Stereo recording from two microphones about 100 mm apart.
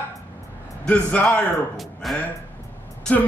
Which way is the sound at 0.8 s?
10° left (ahead or behind).